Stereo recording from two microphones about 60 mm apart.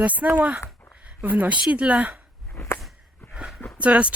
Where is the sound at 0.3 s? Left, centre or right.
Right.